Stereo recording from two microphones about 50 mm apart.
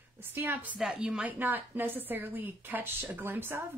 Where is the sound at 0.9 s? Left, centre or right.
Centre.